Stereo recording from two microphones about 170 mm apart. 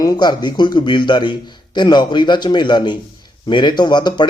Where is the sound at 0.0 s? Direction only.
25° left (ahead or behind).